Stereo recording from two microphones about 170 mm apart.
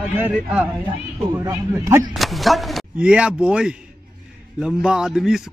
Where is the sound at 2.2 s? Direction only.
Centre (ahead or behind).